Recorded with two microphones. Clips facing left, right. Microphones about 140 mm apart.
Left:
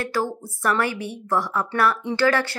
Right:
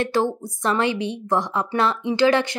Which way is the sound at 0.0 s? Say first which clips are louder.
Right 4 dB; 25° right (ahead or behind).